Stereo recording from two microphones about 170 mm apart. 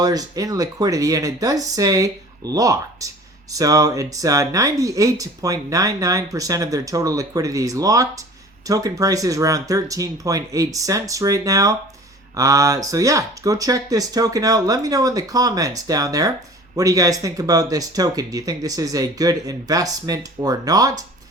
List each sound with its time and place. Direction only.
0.0 s speech: 20° right (ahead or behind)